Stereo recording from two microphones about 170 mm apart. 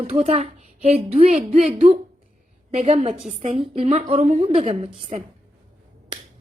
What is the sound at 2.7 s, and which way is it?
A woman's voice, 40° right (ahead or behind).